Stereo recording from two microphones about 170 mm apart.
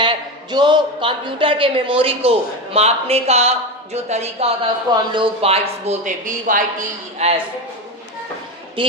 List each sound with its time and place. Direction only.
0.0 s speech: 25° right (ahead or behind); by 7.3 s 45° right (ahead or behind)
8.8 s speech: 30° right (ahead or behind)